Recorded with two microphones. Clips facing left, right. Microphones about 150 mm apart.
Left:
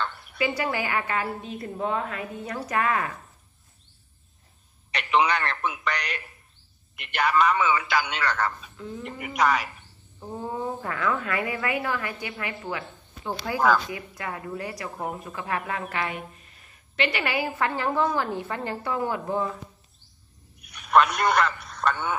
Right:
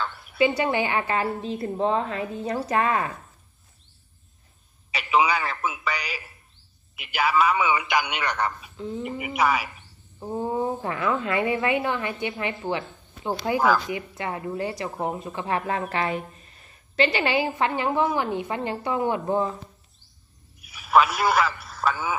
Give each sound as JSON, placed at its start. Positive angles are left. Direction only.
{"t": 0.4, "sound": "speech", "side_deg": -25}
{"t": 4.9, "sound": "a sound", "side_deg": -5}
{"t": 7.0, "sound": "a man's voice", "side_deg": -5}
{"t": 8.7, "sound": "speech", "side_deg": -25}
{"t": 9.0, "sound": "a man's voice", "side_deg": -5}
{"t": 10.2, "sound": "speech", "side_deg": -25}
{"t": 20.5, "sound": "a sound", "side_deg": -5}